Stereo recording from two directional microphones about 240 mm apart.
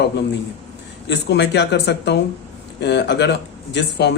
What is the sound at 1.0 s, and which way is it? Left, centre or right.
Speech, left.